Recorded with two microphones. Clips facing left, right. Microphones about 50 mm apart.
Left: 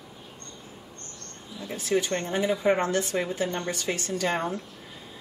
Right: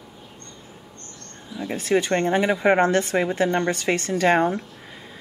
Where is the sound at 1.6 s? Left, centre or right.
Right.